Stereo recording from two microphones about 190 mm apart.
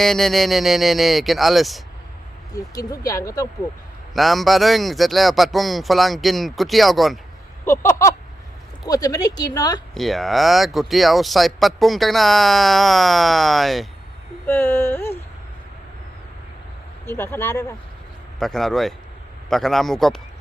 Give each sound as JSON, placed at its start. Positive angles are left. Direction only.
{"t": 0.0, "sound": "speech", "side_deg": 0}
{"t": 2.5, "sound": "speech", "side_deg": 20}
{"t": 4.1, "sound": "speech", "side_deg": 0}
{"t": 7.6, "sound": "a sound", "side_deg": 15}
{"t": 8.8, "sound": "speech", "side_deg": 20}
{"t": 9.9, "sound": "speech", "side_deg": 0}
{"t": 14.4, "sound": "speech", "side_deg": 10}
{"t": 17.1, "sound": "speech", "side_deg": 10}
{"t": 18.3, "sound": "speech", "side_deg": 0}